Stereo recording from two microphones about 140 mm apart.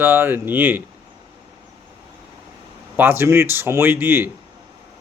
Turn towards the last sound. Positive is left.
turn(degrees=-15)  # may be behind; listen again after turning